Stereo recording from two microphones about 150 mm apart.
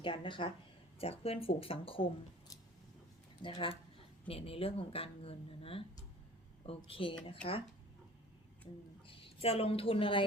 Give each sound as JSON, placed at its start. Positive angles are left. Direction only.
{"t": 0.0, "sound": "speech", "side_deg": 35}
{"t": 3.4, "sound": "speech", "side_deg": 35}
{"t": 9.0, "sound": "a woman's voice", "side_deg": 40}